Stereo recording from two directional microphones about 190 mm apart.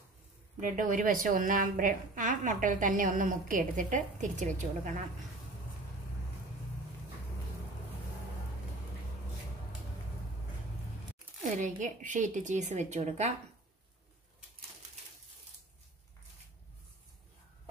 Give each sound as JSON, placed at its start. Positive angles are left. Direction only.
{"t": 0.6, "sound": "a woman's voice", "side_deg": -45}
{"t": 11.4, "sound": "a woman's voice", "side_deg": -40}